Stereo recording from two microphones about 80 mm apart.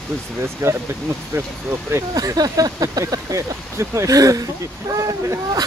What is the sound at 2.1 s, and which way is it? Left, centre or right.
Speech, right.